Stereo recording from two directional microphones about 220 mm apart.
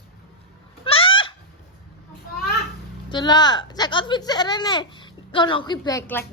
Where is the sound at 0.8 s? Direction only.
25° left (ahead or behind).